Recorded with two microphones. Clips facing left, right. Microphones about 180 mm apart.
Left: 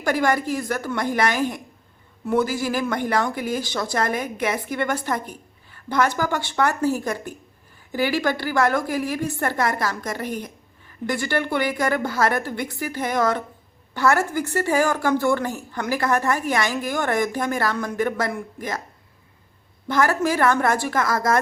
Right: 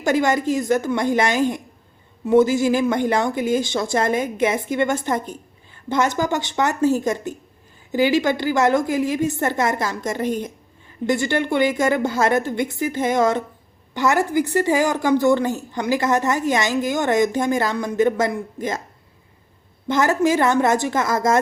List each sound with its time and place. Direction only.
0.0 s a woman's voice: 20° right (ahead or behind)
19.9 s a woman's voice: 20° right (ahead or behind)